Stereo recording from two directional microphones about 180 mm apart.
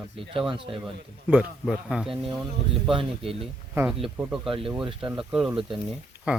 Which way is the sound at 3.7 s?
10° right (ahead or behind).